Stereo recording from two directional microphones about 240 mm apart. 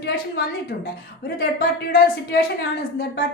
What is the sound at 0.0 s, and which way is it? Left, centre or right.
A woman's voice, left.